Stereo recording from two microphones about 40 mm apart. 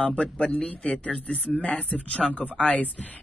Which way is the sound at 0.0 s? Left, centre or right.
Left.